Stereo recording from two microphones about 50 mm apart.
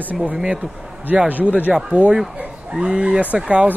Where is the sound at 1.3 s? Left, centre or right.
Right.